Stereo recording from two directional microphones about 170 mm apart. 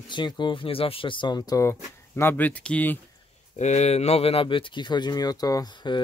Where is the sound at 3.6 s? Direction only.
40° left (ahead or behind); by 6.0 s 25° left (ahead or behind).